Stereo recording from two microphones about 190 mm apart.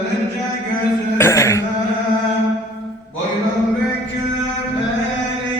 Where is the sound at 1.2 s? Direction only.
15° left (ahead or behind).